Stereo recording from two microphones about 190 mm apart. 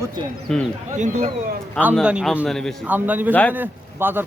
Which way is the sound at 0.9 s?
40° right (ahead or behind).